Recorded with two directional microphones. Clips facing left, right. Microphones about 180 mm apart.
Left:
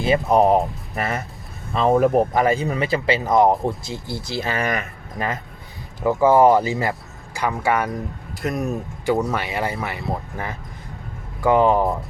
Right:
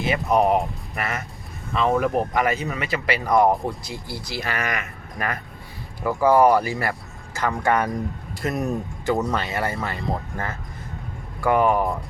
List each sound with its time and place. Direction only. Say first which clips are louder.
0.0 s speech: left 3 dB; 30° left (ahead or behind)
7.5 s speech: right 1 dB; 5° left (ahead or behind)
9.0 s speech: left 2 dB; 10° left (ahead or behind)